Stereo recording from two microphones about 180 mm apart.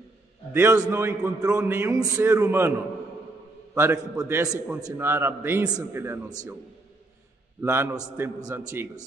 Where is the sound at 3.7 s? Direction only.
10° right (ahead or behind).